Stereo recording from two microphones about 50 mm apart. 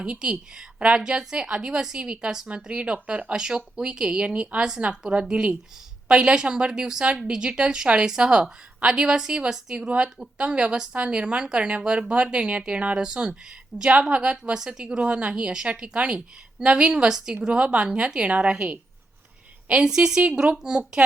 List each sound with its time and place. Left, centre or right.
0.0 s a woman's voice: centre
3.3 s a woman's voice: centre